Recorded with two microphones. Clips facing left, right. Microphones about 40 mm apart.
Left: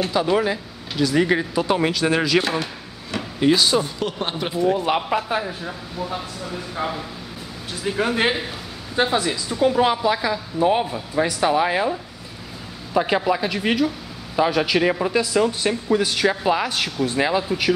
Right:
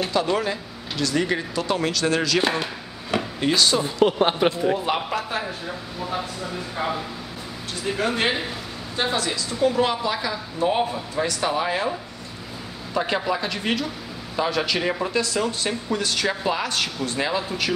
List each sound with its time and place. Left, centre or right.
0.0 s speech: centre
2.4 s chop: centre
3.3 s speech: centre
3.8 s speech: centre
4.7 s speech: centre
5.9 s speech: centre
7.8 s speech: centre
12.9 s speech: centre